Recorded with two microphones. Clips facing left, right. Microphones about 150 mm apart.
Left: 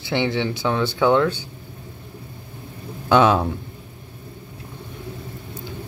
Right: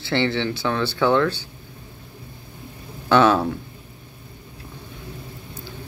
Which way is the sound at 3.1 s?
15° left (ahead or behind).